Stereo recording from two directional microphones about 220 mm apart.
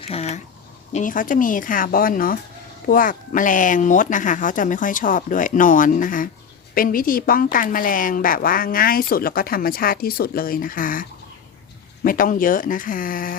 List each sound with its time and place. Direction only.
0.1 s a woman's voice: 30° left (ahead or behind)
12.0 s a woman's voice: 40° left (ahead or behind)